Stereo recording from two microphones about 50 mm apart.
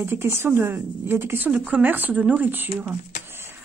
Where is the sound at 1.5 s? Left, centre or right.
Right.